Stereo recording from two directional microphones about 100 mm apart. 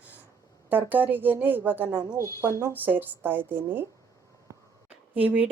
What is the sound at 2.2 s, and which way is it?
Speech, 30° right (ahead or behind).